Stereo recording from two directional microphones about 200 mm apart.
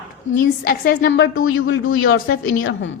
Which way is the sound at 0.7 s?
50° left (ahead or behind).